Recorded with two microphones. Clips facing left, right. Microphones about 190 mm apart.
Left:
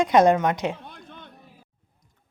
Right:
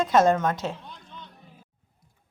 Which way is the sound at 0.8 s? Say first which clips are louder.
Left 2 dB; 55° left (ahead or behind).